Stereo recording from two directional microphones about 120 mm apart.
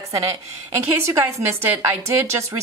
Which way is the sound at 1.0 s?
20° right (ahead or behind).